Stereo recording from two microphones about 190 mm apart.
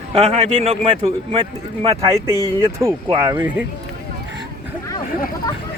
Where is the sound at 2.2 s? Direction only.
20° left (ahead or behind).